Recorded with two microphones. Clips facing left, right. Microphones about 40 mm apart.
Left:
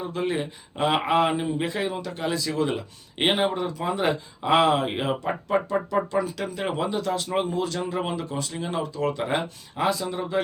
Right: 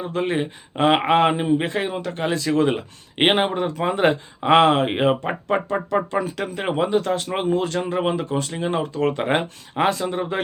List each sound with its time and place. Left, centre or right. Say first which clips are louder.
0.1 s speech: right 6 dB; right